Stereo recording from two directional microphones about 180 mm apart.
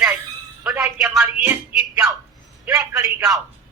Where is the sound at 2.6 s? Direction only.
10° right (ahead or behind).